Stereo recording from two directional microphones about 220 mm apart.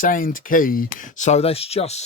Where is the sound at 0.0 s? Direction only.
40° left (ahead or behind).